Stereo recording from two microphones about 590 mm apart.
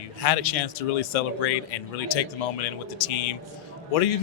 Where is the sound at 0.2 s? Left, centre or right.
Left.